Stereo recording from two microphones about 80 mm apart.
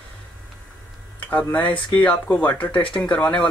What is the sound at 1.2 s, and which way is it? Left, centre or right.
Speech, left.